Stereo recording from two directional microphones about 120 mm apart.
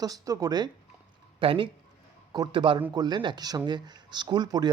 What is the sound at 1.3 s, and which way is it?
Speech, 45° right (ahead or behind).